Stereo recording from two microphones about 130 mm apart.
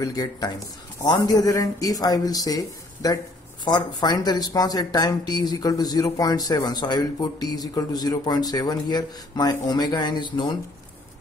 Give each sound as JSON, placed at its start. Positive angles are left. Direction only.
{"t": 0.0, "sound": "speech", "side_deg": 30}